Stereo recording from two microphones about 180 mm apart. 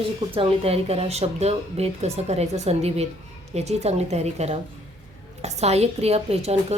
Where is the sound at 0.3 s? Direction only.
30° right (ahead or behind).